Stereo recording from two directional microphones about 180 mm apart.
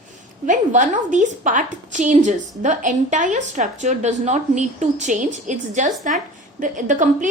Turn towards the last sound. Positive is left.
turn(degrees=-45)  # may be behind; listen again after turning